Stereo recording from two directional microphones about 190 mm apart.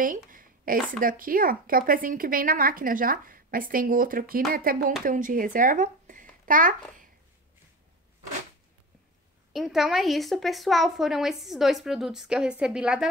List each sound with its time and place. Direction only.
0.3 s a woman's voice: 45° right (ahead or behind)
9.5 s a woman's voice: centre (ahead or behind)